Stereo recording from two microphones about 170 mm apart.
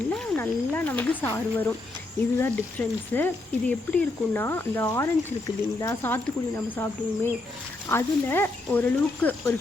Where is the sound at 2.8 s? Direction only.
10° left (ahead or behind).